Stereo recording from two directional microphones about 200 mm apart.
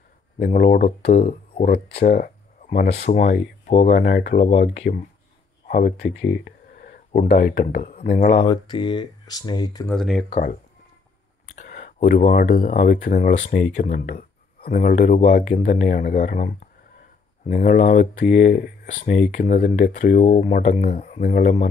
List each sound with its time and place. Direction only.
0.4 s speech: 45° left (ahead or behind)
8.4 s speech: 25° left (ahead or behind)
9.8 s speech: centre (ahead or behind)
10.3 s speech: 40° left (ahead or behind)